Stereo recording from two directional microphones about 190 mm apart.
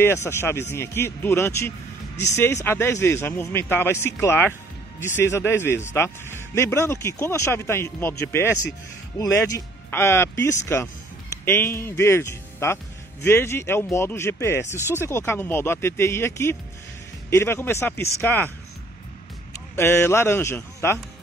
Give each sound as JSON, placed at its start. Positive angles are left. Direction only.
{"t": 0.0, "sound": "speech", "side_deg": 15}
{"t": 19.7, "sound": "speech", "side_deg": 15}